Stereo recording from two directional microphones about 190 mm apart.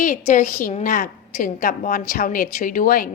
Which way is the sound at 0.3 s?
40° left (ahead or behind).